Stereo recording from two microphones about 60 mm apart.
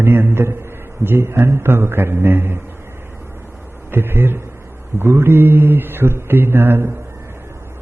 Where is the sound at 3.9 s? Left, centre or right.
Right.